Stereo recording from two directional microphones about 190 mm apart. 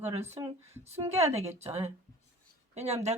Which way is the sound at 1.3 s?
35° right (ahead or behind).